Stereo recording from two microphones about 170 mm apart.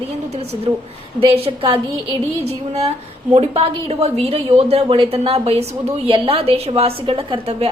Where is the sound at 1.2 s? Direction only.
35° right (ahead or behind).